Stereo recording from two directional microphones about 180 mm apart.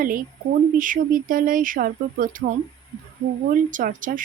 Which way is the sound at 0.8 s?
50° right (ahead or behind).